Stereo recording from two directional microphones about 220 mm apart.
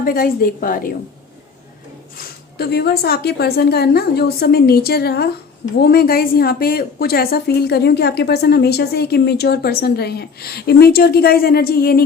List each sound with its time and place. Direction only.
0.0 s a woman's voice: 40° left (ahead or behind)
2.1 s a woman's voice: 45° left (ahead or behind)